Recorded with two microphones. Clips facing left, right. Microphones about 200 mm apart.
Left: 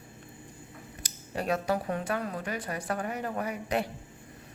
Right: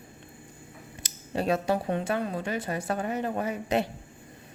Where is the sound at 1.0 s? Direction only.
25° right (ahead or behind).